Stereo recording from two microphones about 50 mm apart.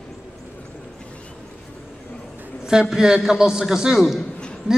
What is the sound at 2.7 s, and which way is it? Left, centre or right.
A man's voice, centre.